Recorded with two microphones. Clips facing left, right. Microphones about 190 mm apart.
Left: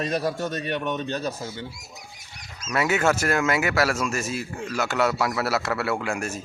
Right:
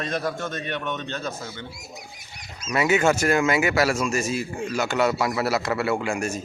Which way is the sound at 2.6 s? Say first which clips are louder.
Right 2 dB; centre (ahead or behind).